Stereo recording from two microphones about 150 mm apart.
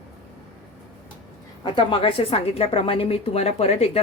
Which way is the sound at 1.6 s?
35° left (ahead or behind).